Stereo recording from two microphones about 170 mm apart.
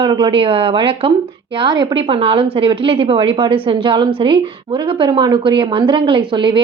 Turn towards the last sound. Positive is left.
turn(degrees=-30)  # may be behind; listen again after turning